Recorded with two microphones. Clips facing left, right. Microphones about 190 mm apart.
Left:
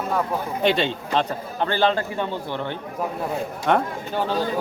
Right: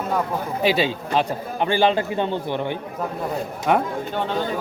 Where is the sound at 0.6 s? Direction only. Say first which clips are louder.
Right 1 dB; 5° right (ahead or behind).